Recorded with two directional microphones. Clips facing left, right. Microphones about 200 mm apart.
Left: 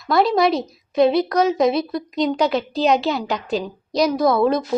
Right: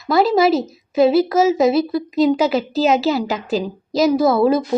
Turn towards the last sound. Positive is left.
turn(degrees=-5)  # may be behind; listen again after turning